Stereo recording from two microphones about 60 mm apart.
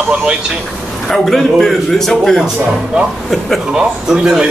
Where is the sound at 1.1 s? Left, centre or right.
Centre.